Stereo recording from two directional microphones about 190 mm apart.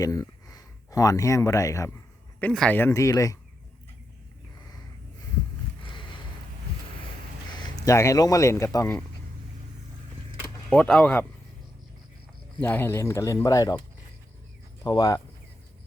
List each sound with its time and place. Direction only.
0.0 s speech: 20° left (ahead or behind)
2.4 s speech: 5° left (ahead or behind)
7.8 s speech: 15° left (ahead or behind)
10.7 s speech: 5° left (ahead or behind)
12.6 s speech: 10° left (ahead or behind)
14.8 s speech: 20° left (ahead or behind)